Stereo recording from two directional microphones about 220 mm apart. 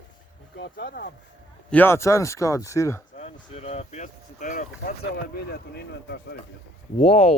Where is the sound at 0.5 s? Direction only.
50° left (ahead or behind).